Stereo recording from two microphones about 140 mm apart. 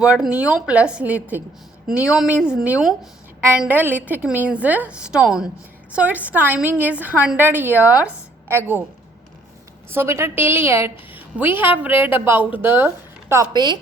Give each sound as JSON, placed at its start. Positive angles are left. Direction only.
{"t": 0.0, "sound": "a woman's voice", "side_deg": -5}
{"t": 9.9, "sound": "a woman's voice", "side_deg": -15}